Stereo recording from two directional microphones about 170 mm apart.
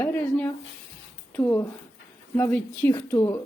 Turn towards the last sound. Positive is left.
turn(degrees=20)  # may be behind; listen again after turning